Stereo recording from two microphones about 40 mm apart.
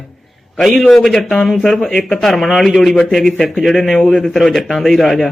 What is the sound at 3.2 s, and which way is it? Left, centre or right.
Speech, centre.